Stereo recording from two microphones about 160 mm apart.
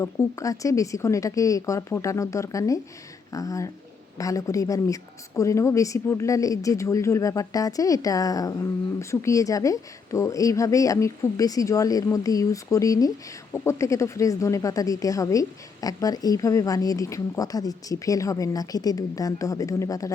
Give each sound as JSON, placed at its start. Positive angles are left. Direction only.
{"t": 0.0, "sound": "a woman's voice", "side_deg": 20}